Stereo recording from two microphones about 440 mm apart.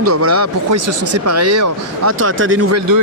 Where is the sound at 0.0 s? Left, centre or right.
Right.